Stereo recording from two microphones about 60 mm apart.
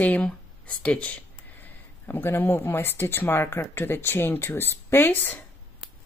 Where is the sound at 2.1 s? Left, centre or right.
Left.